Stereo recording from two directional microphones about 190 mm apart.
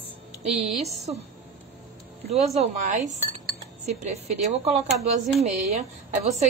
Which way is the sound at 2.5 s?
40° right (ahead or behind).